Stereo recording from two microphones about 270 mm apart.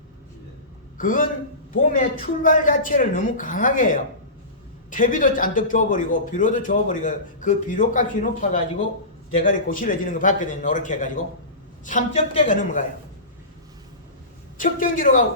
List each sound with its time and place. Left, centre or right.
0.9 s a man's voice: left
14.6 s a man's voice: left